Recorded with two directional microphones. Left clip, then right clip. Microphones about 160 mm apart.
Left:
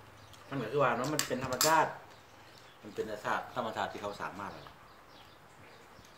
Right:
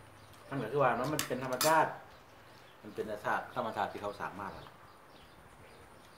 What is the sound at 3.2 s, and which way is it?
Speech, 15° right (ahead or behind).